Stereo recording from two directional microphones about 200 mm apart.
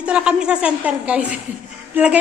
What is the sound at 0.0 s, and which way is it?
A woman's voice, 5° right (ahead or behind).